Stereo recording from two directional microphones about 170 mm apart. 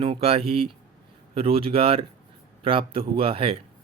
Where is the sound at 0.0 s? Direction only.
35° right (ahead or behind).